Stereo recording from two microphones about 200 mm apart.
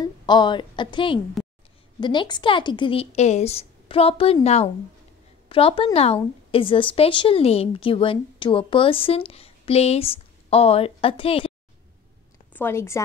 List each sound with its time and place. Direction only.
0.0 s a woman's voice: 20° left (ahead or behind)
12.5 s a woman's voice: 10° left (ahead or behind)